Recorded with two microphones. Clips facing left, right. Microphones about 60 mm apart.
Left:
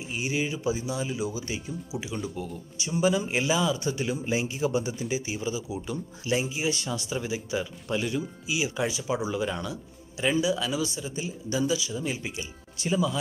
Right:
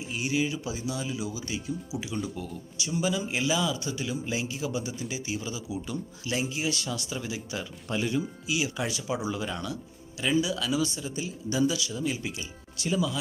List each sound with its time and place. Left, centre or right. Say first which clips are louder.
0.1 s a man's voice: right 1 dB; centre
2.1 s speech: even; centre
2.8 s speech: left 4 dB; left
3.8 s a man's voice: left 3 dB; left
4.9 s speech: left 3 dB; centre
6.4 s speech: left 1 dB; centre
6.7 s speech: left 2 dB; left
7.9 s speech: even; centre
8.5 s speech: left 5 dB; centre
10.1 s speech: left 2 dB; left